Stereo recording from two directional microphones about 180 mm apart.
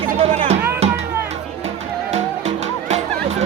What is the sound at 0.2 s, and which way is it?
Music, 40° right (ahead or behind).